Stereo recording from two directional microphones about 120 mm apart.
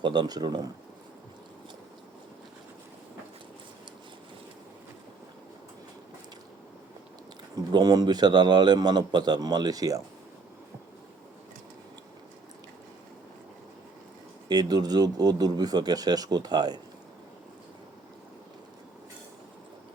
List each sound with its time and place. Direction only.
0.0 s a man's voice: 40° right (ahead or behind)
7.5 s a man's voice: 35° right (ahead or behind)
14.4 s a man's voice: 35° right (ahead or behind)